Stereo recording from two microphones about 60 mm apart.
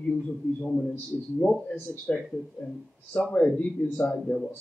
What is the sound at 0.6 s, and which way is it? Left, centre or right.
Speech, centre.